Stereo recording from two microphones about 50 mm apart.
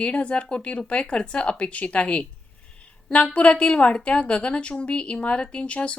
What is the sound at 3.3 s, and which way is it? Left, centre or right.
Speech, left.